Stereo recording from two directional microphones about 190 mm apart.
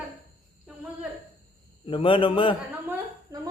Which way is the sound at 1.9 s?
25° left (ahead or behind).